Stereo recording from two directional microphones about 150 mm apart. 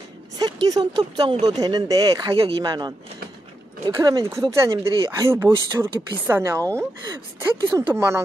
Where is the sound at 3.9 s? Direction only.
25° right (ahead or behind).